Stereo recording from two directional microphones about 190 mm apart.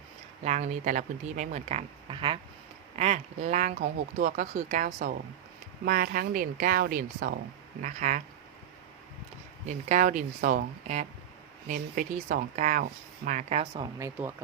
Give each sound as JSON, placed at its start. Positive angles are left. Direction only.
{"t": 0.4, "sound": "a woman's voice", "side_deg": -35}
{"t": 7.8, "sound": "speech", "side_deg": -40}
{"t": 9.6, "sound": "speech", "side_deg": -40}
{"t": 14.0, "sound": "speech", "side_deg": -10}